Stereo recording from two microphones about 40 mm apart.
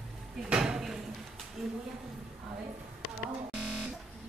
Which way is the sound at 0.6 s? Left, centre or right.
Centre.